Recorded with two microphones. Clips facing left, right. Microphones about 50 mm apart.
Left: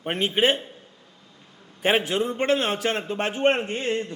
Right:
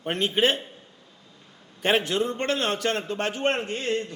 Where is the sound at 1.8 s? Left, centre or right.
Centre.